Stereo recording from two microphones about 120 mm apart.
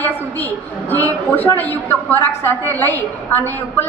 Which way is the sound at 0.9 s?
15° left (ahead or behind).